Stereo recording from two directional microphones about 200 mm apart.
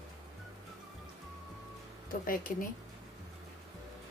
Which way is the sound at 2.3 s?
45° left (ahead or behind).